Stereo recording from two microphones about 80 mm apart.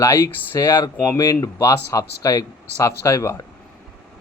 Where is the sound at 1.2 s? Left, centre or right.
Left.